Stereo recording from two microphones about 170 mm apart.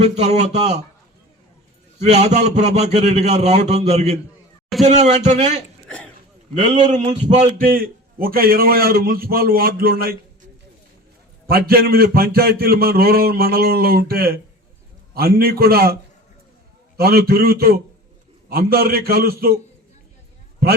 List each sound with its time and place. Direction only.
0.0 s a man's voice: 40° right (ahead or behind)
2.0 s a man's voice: 40° right (ahead or behind)
6.7 s a man's voice: 45° right (ahead or behind); by 10.2 s 60° right (ahead or behind)
11.4 s a man's voice: 60° right (ahead or behind)
17.0 s a man's voice: 65° right (ahead or behind)